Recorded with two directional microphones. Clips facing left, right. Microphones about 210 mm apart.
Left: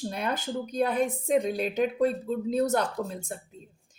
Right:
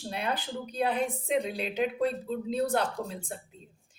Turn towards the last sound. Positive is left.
turn(degrees=45)  # may be behind; listen again after turning